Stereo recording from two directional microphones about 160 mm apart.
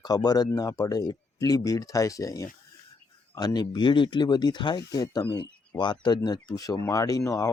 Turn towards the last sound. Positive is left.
turn(degrees=20)  # may be behind; listen again after turning